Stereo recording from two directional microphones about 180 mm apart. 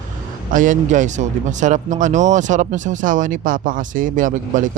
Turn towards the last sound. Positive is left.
turn(degrees=-45)  # may be behind; listen again after turning